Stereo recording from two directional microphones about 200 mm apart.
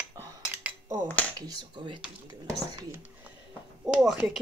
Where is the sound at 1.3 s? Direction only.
20° right (ahead or behind).